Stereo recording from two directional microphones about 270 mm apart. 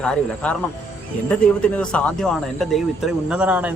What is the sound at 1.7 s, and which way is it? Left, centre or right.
Speech, centre.